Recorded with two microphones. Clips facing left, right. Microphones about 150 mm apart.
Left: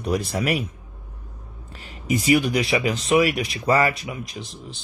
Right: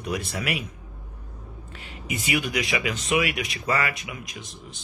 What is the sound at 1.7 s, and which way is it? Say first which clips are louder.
Speech: left 9 dB; 40° left (ahead or behind).